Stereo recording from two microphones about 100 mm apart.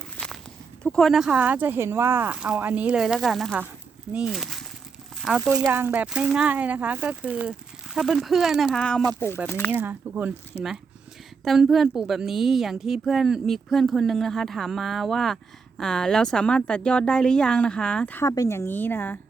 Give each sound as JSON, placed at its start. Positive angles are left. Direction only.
{"t": 0.8, "sound": "speech", "side_deg": 5}
{"t": 1.3, "sound": "a woman's voice", "side_deg": -15}
{"t": 4.1, "sound": "speech", "side_deg": -10}
{"t": 4.4, "sound": "speech", "side_deg": 0}
{"t": 5.7, "sound": "speech", "side_deg": -20}
{"t": 7.9, "sound": "a woman's voice", "side_deg": -5}
{"t": 8.8, "sound": "a woman's voice", "side_deg": 10}
{"t": 9.5, "sound": "a woman's voice", "side_deg": 20}
{"t": 9.7, "sound": "a woman's voice", "side_deg": -20}
{"t": 18.3, "sound": "a woman's voice", "side_deg": 30}